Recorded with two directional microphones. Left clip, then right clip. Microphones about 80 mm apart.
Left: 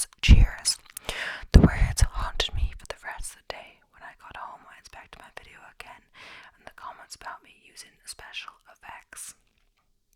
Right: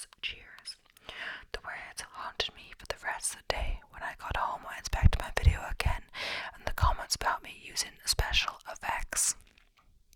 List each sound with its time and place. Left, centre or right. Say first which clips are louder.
0.2 s whispering: left 12 dB; left
1.2 s whispering: left 14 dB; left
2.6 s whispering: even; centre
3.2 s whispering: right 5 dB; centre; by 9.4 s right